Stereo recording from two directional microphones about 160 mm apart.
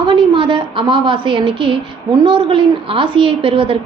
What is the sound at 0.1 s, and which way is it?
A woman's voice, 30° right (ahead or behind).